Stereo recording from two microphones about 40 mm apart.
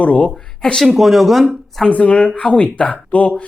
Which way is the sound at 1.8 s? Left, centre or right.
Left.